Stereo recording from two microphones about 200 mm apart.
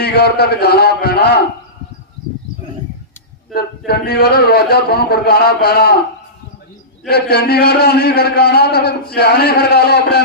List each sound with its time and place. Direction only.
0.0 s a man's voice: 55° left (ahead or behind)
3.5 s a man's voice: 50° left (ahead or behind)
7.1 s a man's voice: 55° left (ahead or behind)